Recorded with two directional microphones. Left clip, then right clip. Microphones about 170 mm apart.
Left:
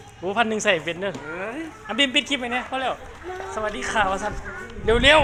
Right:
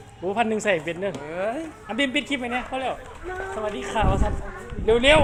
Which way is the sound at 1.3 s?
70° right (ahead or behind).